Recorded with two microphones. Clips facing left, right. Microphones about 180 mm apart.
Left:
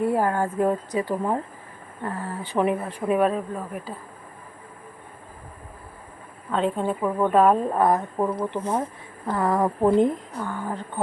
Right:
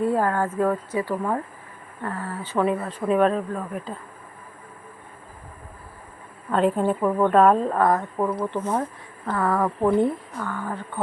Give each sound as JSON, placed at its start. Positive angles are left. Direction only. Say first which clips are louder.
{"t": 0.0, "sound": "speech", "louder": "even", "side_deg": 15}
{"t": 6.5, "sound": "a woman's voice", "louder": "right 3 dB", "side_deg": -5}
{"t": 7.2, "sound": "speech", "louder": "right 1 dB", "side_deg": 5}